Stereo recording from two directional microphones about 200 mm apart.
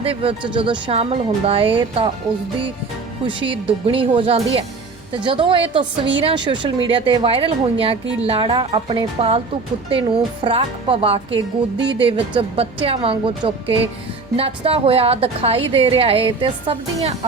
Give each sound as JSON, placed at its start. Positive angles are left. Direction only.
{"t": 0.0, "sound": "a woman's voice", "side_deg": -25}
{"t": 3.2, "sound": "a woman's voice", "side_deg": -25}